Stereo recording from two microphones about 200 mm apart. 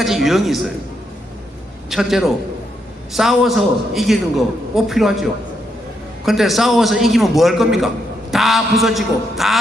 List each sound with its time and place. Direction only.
0.0 s a man's voice: centre (ahead or behind)
1.9 s a man's voice: centre (ahead or behind)